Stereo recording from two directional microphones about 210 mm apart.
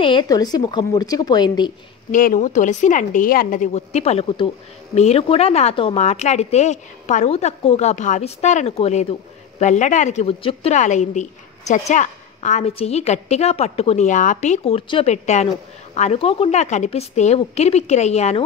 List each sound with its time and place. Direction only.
0.0 s a woman's voice: 20° left (ahead or behind)
2.0 s a woman's voice: 40° left (ahead or behind)